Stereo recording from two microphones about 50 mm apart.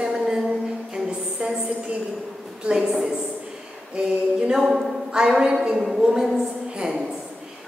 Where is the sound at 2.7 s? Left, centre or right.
Centre.